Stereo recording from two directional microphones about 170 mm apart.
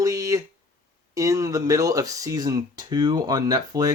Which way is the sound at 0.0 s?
20° right (ahead or behind).